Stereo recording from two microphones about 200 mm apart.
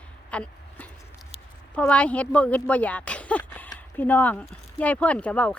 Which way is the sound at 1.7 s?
5° left (ahead or behind).